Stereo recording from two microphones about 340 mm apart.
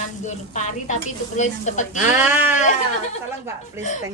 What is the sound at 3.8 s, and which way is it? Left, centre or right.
Speech, left.